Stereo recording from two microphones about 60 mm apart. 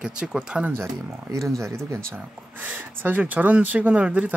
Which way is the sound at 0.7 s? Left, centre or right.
Right.